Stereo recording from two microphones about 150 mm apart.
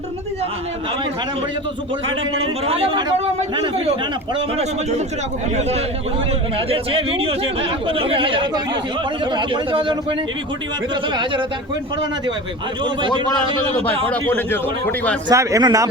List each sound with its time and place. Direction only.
2.3 s speech: 40° right (ahead or behind)
4.5 s speech: 50° right (ahead or behind); by 11.4 s 30° right (ahead or behind)
12.8 s speech: 30° right (ahead or behind)
13.8 s a man's voice: 10° left (ahead or behind)
15.3 s speech: 20° right (ahead or behind)